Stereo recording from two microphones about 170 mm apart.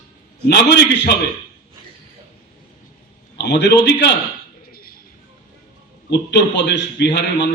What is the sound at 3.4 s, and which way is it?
Speech, 85° left.